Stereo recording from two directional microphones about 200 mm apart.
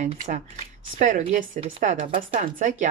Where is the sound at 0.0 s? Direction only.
40° right (ahead or behind).